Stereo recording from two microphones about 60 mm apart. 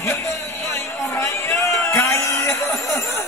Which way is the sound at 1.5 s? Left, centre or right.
Left.